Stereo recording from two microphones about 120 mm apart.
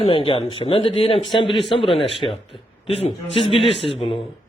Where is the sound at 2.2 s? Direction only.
35° left (ahead or behind).